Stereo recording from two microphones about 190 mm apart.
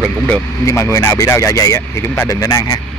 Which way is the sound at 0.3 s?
15° left (ahead or behind).